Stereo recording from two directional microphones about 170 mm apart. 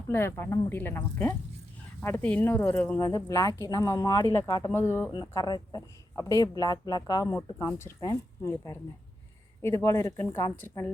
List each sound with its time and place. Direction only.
0.1 s speech: 15° left (ahead or behind)
5.1 s speech: 25° left (ahead or behind)